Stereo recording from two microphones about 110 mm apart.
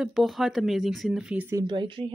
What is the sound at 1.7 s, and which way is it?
Speech, 50° right (ahead or behind).